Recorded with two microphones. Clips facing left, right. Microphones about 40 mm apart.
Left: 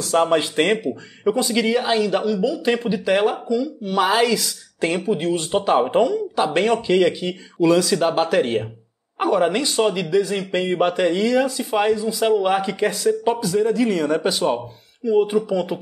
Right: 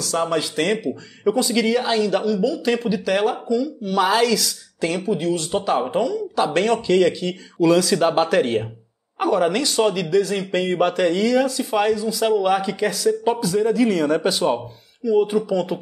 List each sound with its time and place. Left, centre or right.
0.0 s speech: left
1.2 s speech: centre
4.7 s speech: left
6.3 s speech: centre
7.6 s speech: centre
9.2 s speech: centre
12.7 s speech: left
13.3 s speech: centre
15.1 s speech: centre